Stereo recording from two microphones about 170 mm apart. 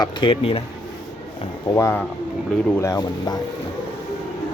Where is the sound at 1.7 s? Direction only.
15° left (ahead or behind).